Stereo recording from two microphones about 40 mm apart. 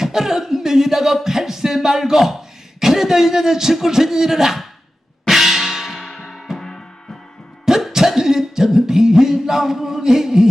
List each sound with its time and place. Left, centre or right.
0.0 s a sound: centre
2.8 s speech: centre
5.2 s cymbal: centre
6.6 s music: centre
7.9 s music: centre